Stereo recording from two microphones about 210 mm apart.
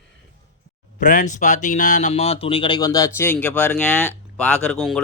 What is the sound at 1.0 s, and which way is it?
Speech, 40° left (ahead or behind).